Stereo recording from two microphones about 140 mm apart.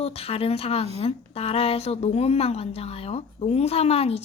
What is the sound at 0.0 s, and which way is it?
A woman's voice, 45° left (ahead or behind).